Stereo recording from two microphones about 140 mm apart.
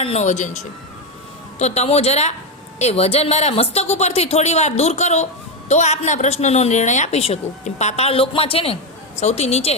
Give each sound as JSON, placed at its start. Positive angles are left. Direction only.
{"t": 0.0, "sound": "speech", "side_deg": 50}